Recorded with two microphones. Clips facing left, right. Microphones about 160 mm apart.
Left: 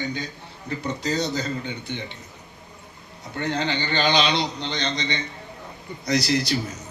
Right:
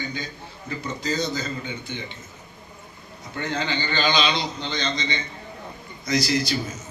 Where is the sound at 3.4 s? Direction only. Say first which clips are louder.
Left 2 dB; 65° left (ahead or behind).